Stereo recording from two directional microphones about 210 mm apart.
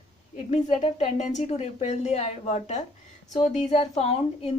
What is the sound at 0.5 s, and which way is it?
A woman's voice, 30° left (ahead or behind).